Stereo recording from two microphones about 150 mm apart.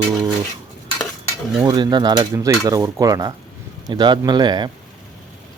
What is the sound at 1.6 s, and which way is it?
Dishes, 30° right (ahead or behind).